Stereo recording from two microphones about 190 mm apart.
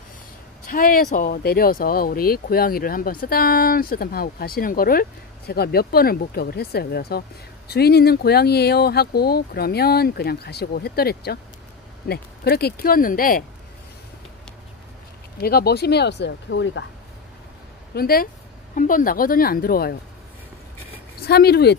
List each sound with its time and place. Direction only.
0.7 s speech: 50° left (ahead or behind)
15.3 s speech: 55° left (ahead or behind); by 16.8 s 70° left (ahead or behind)
17.9 s speech: 50° left (ahead or behind)
21.2 s speech: 55° left (ahead or behind)